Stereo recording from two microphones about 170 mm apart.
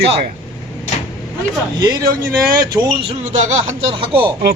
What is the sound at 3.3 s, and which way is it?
Speech, 40° right (ahead or behind).